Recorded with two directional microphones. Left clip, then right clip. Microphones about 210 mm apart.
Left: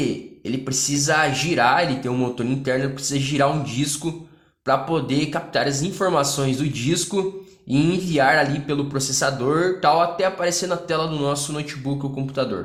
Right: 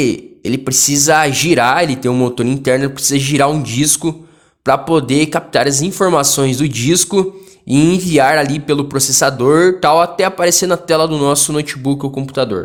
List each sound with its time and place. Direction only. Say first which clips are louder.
0.0 s speech: right 9 dB; 55° right (ahead or behind)